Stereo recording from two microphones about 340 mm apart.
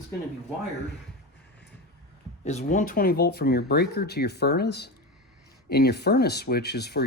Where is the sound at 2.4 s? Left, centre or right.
Centre.